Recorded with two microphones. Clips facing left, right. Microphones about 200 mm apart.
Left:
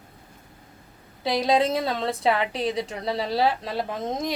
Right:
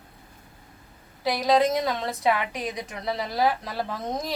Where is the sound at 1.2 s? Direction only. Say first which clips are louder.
Even; 30° left (ahead or behind).